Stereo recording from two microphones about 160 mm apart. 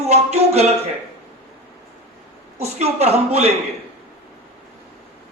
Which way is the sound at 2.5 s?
40° right (ahead or behind).